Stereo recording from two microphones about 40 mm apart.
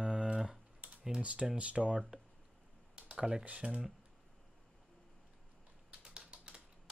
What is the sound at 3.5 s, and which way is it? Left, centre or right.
Speech, right.